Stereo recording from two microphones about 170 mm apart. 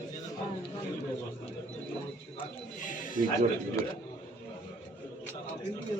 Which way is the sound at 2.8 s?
50° left (ahead or behind).